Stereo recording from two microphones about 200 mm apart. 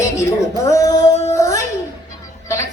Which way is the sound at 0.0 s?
15° left (ahead or behind).